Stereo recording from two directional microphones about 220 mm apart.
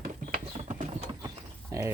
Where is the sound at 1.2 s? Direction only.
15° right (ahead or behind).